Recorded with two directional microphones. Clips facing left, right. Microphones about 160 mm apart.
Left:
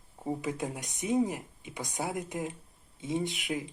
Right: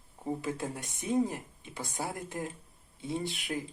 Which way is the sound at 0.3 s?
20° left (ahead or behind).